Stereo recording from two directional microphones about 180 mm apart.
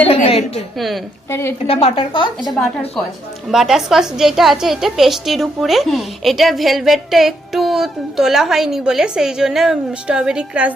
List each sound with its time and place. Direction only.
0.1 s a sound: 35° left (ahead or behind)
0.8 s a woman's voice: centre (ahead or behind)
1.3 s a woman's voice: 15° left (ahead or behind)
1.6 s a woman's voice: 30° left (ahead or behind)
3.5 s a woman's voice: centre (ahead or behind)